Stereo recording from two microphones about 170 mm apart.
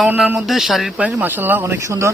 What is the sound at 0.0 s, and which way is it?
Speech, 5° right (ahead or behind).